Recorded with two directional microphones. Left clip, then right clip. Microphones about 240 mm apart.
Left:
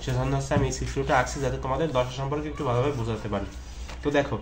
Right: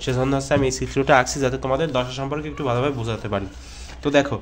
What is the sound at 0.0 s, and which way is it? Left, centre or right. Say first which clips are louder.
A man's voice: right 7 dB; right.